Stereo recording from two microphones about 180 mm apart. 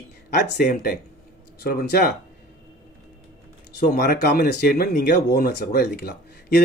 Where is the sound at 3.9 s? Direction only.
60° left (ahead or behind).